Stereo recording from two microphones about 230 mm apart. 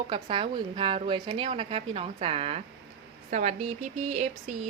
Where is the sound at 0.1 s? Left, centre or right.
Right.